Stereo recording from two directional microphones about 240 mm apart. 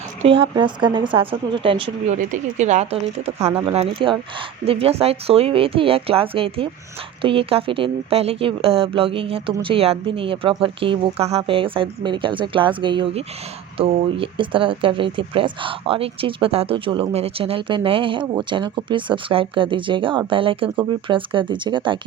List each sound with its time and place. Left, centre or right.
0.2 s speech: right